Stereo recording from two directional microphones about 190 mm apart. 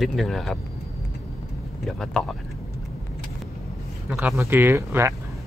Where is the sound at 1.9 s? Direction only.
Centre (ahead or behind).